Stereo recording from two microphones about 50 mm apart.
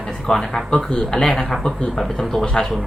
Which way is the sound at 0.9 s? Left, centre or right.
Centre.